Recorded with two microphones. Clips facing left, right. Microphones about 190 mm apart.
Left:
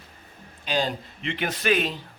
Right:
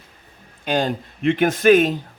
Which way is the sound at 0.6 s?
50° right (ahead or behind).